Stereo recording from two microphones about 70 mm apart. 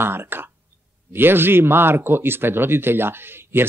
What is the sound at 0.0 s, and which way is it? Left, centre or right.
Speech, right.